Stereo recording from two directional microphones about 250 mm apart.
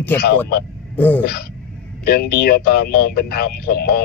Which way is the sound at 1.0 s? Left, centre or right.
Centre.